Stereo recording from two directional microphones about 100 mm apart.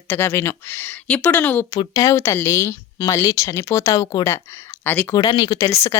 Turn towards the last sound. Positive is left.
turn(degrees=40)  # may be behind; listen again after turning